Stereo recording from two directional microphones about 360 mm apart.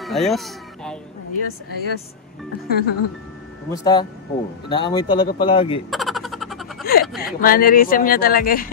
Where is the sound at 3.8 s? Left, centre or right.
Centre.